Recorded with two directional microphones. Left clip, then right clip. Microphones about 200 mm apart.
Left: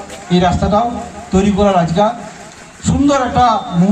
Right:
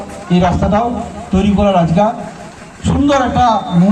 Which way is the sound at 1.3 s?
15° right (ahead or behind).